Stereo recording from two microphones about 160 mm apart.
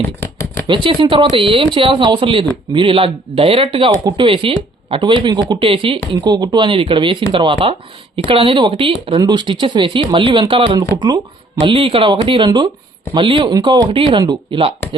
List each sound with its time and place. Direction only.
0.7 s speech: 30° right (ahead or behind)